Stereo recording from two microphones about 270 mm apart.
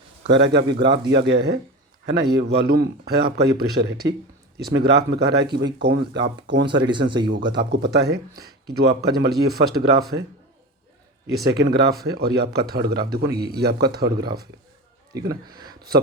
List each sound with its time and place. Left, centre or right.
0.3 s a man's voice: right
6.8 s speech: centre
7.3 s a man's voice: right
11.3 s a man's voice: right